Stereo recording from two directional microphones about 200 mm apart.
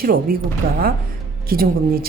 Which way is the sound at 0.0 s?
45° right (ahead or behind).